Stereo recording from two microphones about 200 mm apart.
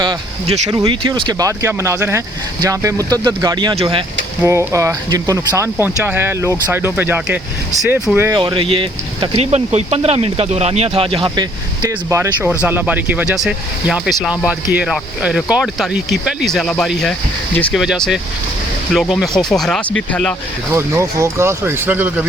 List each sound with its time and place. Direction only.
0.0 s speech: 20° right (ahead or behind)
8.4 s speech: 25° right (ahead or behind)
11.8 s speech: 15° right (ahead or behind); by 19.8 s centre (ahead or behind)
20.7 s speech: 15° right (ahead or behind)